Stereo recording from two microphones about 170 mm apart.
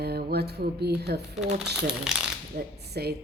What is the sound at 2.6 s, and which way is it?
Speech, 70° right (ahead or behind).